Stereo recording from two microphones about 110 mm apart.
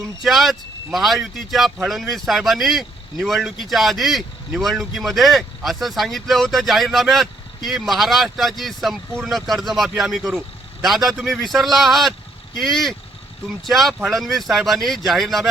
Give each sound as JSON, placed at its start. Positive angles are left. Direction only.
{"t": 0.2, "sound": "speech", "side_deg": 0}